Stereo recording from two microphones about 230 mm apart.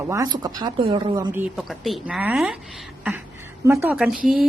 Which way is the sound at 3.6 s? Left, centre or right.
Centre.